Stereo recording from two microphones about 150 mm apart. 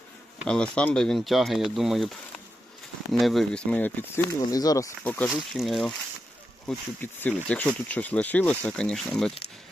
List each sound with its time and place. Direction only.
0.4 s speech: 5° left (ahead or behind)
4.4 s speech: 25° left (ahead or behind)
5.0 s speech: 10° left (ahead or behind)
5.5 s speech: centre (ahead or behind)